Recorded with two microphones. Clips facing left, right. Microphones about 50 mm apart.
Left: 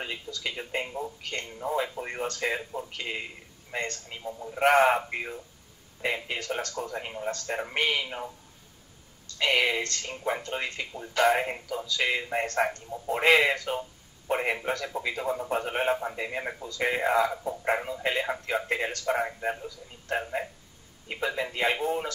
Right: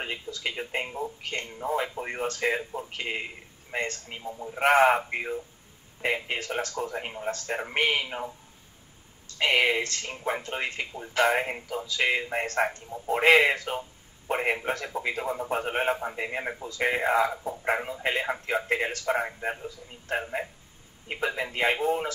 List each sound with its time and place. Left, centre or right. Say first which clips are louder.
0.0 s a man's voice: right 2 dB; centre
4.2 s a man's voice: even; centre
4.6 s a man's voice: right 1 dB; centre
6.2 s a man's voice: right 1 dB; right; by 7.7 s centre
7.7 s a man's voice: right 2 dB; right
9.4 s a man's voice: right 2 dB; centre
10.6 s a man's voice: right 2 dB; right
13.7 s a sound: even; centre
14.7 s a man's voice: right 1 dB; right
17.3 s a man's voice: even; centre
18.0 s a man's voice: right 1 dB; centre